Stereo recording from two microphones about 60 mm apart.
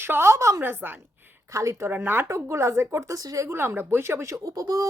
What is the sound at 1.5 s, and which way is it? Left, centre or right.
Speech, right.